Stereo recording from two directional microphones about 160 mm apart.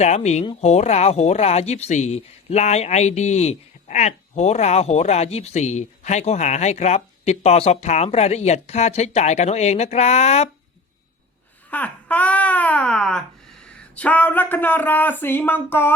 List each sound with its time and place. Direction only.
0.0 s speech: 45° left (ahead or behind)
11.7 s speech: 10° left (ahead or behind)